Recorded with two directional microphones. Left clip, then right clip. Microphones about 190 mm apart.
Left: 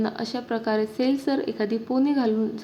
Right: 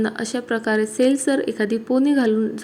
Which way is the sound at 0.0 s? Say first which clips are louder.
Right 4 dB; 15° right (ahead or behind).